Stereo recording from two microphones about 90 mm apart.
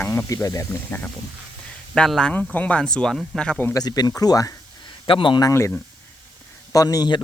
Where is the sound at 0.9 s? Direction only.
20° left (ahead or behind).